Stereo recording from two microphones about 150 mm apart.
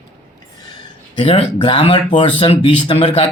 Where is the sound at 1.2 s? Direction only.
40° left (ahead or behind).